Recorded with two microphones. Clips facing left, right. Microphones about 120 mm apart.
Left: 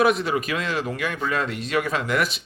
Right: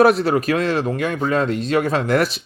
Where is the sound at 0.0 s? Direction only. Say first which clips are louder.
Right 6 dB; 35° right (ahead or behind).